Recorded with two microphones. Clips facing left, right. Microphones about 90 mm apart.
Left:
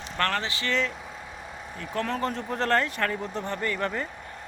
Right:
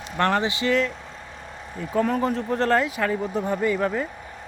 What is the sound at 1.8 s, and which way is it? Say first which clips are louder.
Speech: right 6 dB; 10° right (ahead or behind).